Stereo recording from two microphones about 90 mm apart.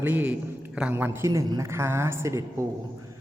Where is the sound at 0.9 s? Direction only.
25° right (ahead or behind).